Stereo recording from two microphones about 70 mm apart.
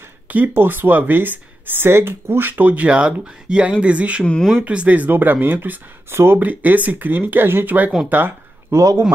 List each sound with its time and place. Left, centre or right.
0.3 s speech: right
4.2 s speech: centre
4.6 s speech: right
8.1 s a sound: right
8.7 s speech: right